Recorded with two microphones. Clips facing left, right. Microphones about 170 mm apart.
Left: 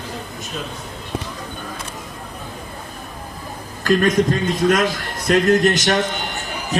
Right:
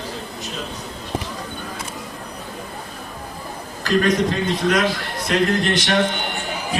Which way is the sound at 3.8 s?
45° left (ahead or behind).